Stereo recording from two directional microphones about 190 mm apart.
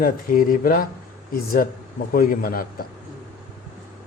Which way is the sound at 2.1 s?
50° left (ahead or behind).